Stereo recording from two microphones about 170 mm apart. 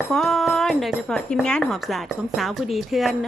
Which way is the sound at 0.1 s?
Centre (ahead or behind).